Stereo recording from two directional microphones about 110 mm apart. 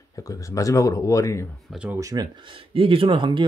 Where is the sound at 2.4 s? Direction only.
55° right (ahead or behind).